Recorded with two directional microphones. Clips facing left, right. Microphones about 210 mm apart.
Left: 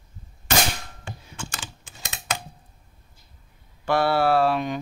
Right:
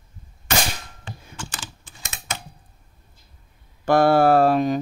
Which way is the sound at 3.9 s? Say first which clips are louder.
Right 5 dB; 45° right (ahead or behind).